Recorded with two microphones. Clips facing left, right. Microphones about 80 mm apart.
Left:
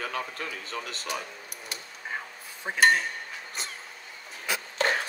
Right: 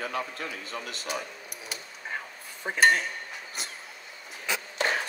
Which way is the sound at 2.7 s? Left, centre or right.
Centre.